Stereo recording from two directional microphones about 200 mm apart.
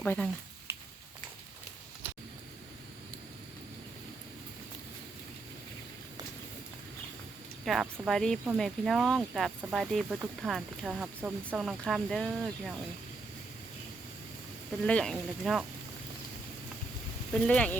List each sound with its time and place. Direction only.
0.0 s speech: 5° left (ahead or behind)
7.6 s speech: centre (ahead or behind)
14.8 s speech: 5° left (ahead or behind)
17.4 s speech: 5° left (ahead or behind)